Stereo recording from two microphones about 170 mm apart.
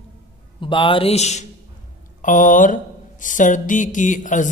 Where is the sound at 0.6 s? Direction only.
30° left (ahead or behind).